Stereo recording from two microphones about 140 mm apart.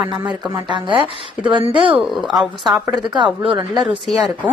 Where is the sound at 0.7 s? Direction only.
35° right (ahead or behind).